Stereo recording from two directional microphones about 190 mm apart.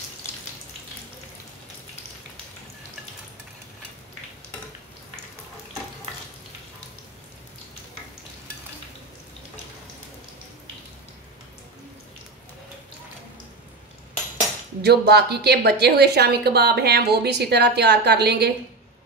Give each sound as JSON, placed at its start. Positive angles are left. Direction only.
{"t": 14.8, "sound": "a woman's voice", "side_deg": -60}